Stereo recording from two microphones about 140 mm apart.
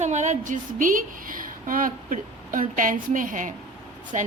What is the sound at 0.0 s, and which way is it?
A woman's voice, 60° right (ahead or behind).